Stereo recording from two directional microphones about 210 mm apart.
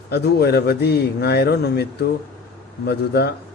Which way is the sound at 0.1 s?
50° left (ahead or behind).